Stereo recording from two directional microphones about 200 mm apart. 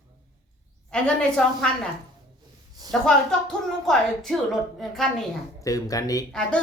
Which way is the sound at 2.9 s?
5° left (ahead or behind).